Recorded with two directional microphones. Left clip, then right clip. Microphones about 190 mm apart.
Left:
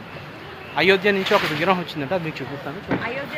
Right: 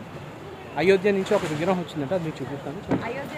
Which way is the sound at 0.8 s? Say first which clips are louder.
Left 3 dB; 5° right (ahead or behind).